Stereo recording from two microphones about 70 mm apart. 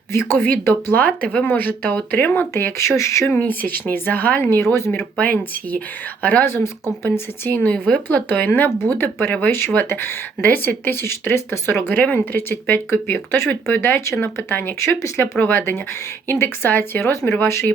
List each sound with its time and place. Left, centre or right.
0.1 s speech: left
3.3 s speech: left
4.9 s speech: left